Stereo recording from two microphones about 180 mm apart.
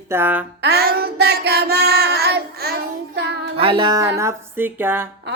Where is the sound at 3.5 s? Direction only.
30° right (ahead or behind); by 5.1 s 10° right (ahead or behind).